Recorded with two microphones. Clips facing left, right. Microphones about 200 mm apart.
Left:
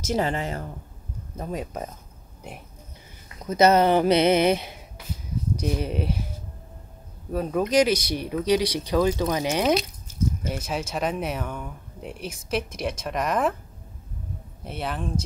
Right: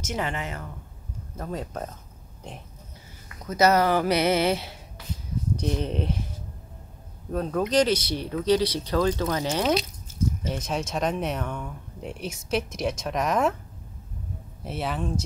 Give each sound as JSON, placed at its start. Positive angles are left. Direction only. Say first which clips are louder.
{"t": 0.0, "sound": "speech", "louder": "left 5 dB", "side_deg": 35}
{"t": 1.4, "sound": "speech", "louder": "left 1 dB", "side_deg": 15}
{"t": 3.4, "sound": "speech", "louder": "left 3 dB", "side_deg": 20}
{"t": 7.3, "sound": "speech", "louder": "left 2 dB", "side_deg": 10}
{"t": 14.6, "sound": "speech", "louder": "right 1 dB", "side_deg": 0}